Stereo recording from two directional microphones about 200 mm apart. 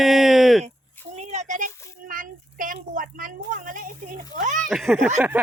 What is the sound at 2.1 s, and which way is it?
A woman's voice, 45° right (ahead or behind).